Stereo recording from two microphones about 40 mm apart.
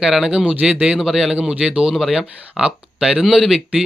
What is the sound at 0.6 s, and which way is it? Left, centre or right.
Speech, right.